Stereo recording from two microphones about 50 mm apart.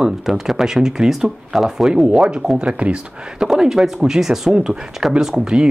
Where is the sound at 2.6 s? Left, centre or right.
Right.